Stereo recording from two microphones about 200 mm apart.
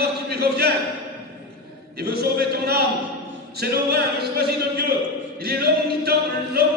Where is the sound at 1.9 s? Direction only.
50° right (ahead or behind).